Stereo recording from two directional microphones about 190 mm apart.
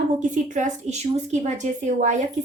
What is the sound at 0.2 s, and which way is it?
A woman's voice, 40° right (ahead or behind).